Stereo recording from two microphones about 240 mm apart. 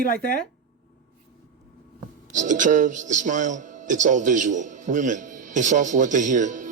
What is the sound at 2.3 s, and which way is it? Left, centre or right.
Speech, right.